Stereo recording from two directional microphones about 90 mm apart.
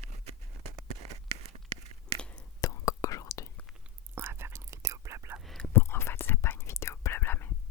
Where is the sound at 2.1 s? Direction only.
10° left (ahead or behind).